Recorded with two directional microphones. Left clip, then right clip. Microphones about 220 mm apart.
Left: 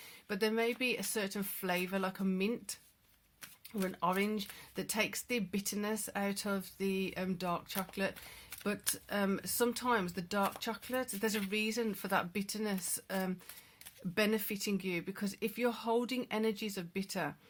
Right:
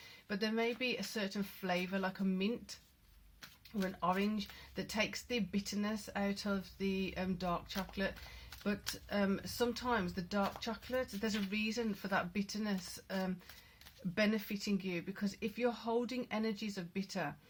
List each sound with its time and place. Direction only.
0.3 s speech: 40° left (ahead or behind)
3.8 s speech: 45° left (ahead or behind)